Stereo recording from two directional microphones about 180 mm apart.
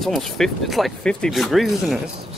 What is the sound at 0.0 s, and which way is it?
Speech, centre (ahead or behind).